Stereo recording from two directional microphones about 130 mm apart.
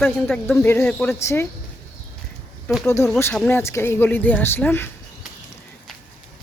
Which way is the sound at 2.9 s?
20° left (ahead or behind).